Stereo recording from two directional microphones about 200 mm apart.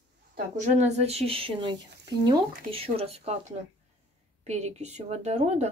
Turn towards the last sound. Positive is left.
turn(degrees=-35)  # may be behind; listen again after turning